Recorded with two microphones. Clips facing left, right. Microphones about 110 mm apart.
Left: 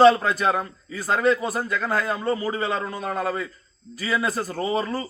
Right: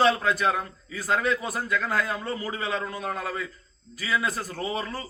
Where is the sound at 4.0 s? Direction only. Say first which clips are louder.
Left 3 dB; 35° left (ahead or behind).